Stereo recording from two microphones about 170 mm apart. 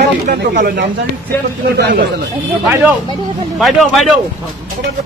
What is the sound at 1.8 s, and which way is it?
Speech, 75° right (ahead or behind).